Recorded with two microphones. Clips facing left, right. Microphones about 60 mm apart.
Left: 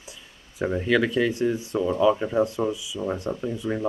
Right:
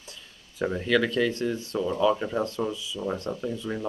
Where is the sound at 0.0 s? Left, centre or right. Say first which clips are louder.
Left 2 dB; centre.